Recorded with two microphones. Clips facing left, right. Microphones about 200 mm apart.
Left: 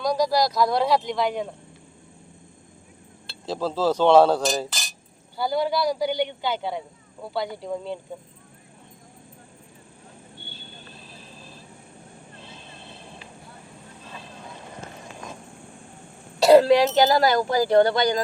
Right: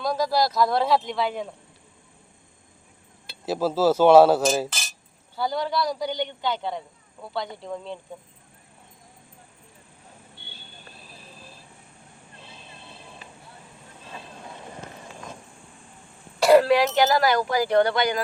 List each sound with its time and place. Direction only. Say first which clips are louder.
0.0 s a man's voice: left 2 dB; centre (ahead or behind)
3.4 s a man's voice: right 2 dB; 10° right (ahead or behind)
12.4 s a sound: even; centre (ahead or behind)
16.5 s speech: left 2 dB; 25° left (ahead or behind)